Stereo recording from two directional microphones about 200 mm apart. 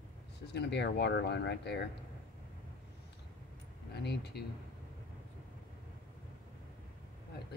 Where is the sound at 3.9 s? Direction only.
55° left (ahead or behind).